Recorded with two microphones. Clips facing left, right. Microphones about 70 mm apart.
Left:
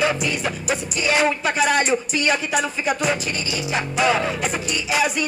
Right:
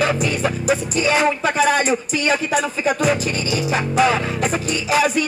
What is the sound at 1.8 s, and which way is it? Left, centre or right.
Speech, centre.